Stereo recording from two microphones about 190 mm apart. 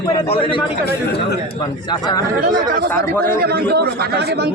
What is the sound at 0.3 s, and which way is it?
Speech, 30° left (ahead or behind).